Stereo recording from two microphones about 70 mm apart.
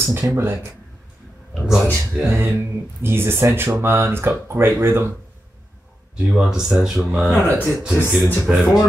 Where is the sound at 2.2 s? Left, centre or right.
Right.